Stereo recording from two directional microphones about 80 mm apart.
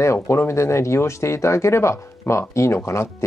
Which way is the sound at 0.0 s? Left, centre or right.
Left.